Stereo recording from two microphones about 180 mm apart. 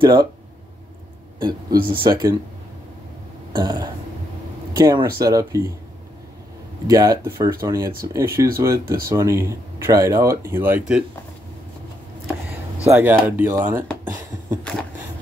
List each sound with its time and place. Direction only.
0.0 s speech: 25° right (ahead or behind)
1.9 s speech: 20° right (ahead or behind)
3.5 s speech: 20° right (ahead or behind)
6.9 s speech: 20° right (ahead or behind)
12.9 s speech: 10° right (ahead or behind)
14.6 s a sound: 5° left (ahead or behind)